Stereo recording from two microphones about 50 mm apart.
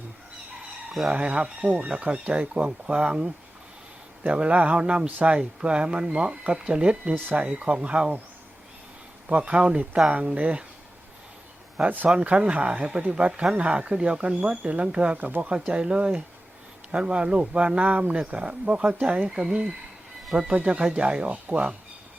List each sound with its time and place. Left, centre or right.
1.1 s speech: right
9.3 s speech: right
11.8 s speech: right
12.0 s speech: right